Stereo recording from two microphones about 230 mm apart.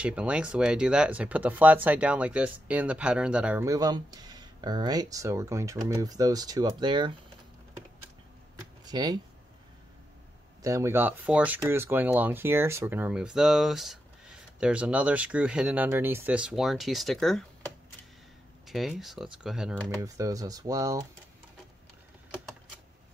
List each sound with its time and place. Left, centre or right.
0.0 s speech: centre
8.8 s speech: centre
10.6 s speech: centre
20.0 s speech: centre